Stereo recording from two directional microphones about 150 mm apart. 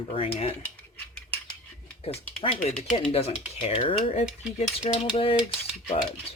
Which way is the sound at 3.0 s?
40° left (ahead or behind).